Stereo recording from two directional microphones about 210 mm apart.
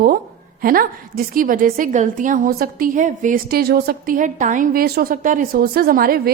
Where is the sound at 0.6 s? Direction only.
45° right (ahead or behind).